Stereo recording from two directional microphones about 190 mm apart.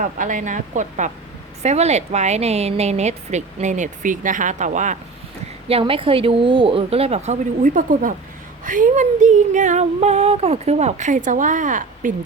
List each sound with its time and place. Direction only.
0.0 s speech: 45° right (ahead or behind)
5.6 s speech: 30° right (ahead or behind)